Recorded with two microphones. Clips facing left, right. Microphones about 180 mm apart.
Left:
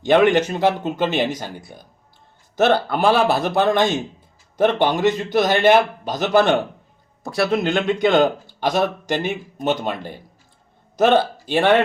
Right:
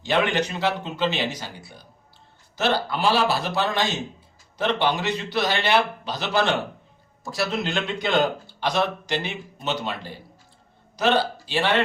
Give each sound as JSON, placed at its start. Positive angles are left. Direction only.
{"t": 0.0, "sound": "speech", "side_deg": 50}